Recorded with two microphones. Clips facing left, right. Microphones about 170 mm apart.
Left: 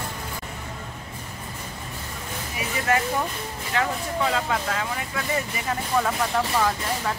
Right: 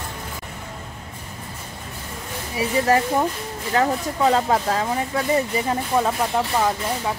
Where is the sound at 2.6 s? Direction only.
35° right (ahead or behind).